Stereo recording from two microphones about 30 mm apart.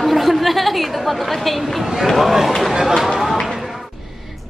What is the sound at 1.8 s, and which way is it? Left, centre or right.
A woman's voice, centre.